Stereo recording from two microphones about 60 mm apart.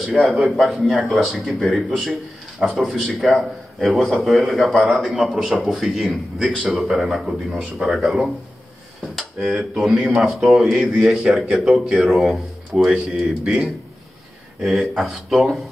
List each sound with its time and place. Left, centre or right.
0.1 s a man's voice: centre
13.4 s a man's voice: centre
14.6 s a man's voice: centre